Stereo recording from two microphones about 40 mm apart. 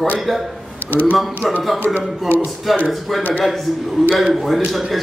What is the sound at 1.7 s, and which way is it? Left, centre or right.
Speech, left.